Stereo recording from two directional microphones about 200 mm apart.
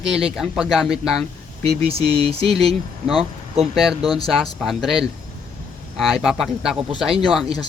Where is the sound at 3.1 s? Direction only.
25° right (ahead or behind).